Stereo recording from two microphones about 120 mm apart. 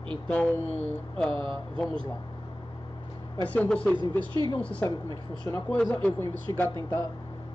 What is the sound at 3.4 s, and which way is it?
Speech, 10° left (ahead or behind).